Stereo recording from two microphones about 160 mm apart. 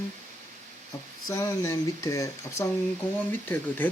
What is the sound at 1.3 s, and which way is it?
Speech, 20° left (ahead or behind).